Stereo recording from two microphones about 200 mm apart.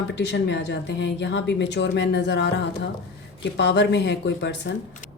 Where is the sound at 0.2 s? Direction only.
60° left (ahead or behind).